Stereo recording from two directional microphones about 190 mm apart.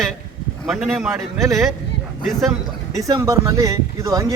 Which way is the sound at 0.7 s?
Centre (ahead or behind).